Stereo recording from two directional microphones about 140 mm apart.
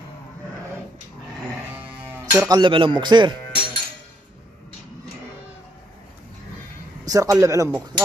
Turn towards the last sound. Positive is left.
turn(degrees=-20)  # may be behind; listen again after turning